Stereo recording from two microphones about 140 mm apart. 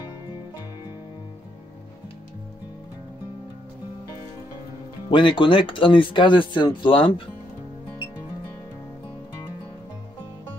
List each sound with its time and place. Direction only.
5.1 s speech: 35° left (ahead or behind)